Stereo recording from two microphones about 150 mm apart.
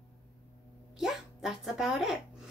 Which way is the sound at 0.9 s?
Centre (ahead or behind).